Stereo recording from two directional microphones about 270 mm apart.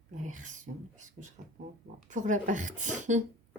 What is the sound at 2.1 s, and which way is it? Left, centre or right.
A woman's voice, right.